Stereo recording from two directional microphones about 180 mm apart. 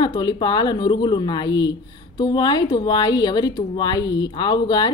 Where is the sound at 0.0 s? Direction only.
25° left (ahead or behind).